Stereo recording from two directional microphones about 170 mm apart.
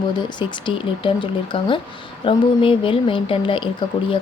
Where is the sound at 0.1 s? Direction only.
25° left (ahead or behind).